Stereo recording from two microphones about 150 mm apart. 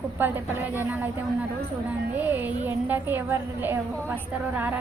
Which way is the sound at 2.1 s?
10° right (ahead or behind).